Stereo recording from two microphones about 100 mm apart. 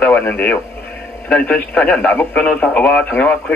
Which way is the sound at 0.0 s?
20° left (ahead or behind).